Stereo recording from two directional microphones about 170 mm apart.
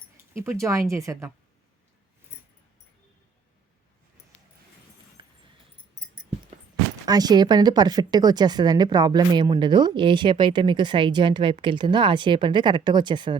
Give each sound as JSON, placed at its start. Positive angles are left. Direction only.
{"t": 0.3, "sound": "speech", "side_deg": -15}
{"t": 5.2, "sound": "a sound", "side_deg": -30}
{"t": 7.0, "sound": "speech", "side_deg": -25}